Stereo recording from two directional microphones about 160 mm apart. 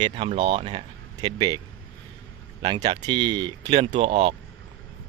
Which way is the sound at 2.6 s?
30° right (ahead or behind).